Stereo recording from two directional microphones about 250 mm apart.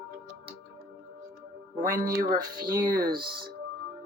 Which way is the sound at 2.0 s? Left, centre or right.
Right.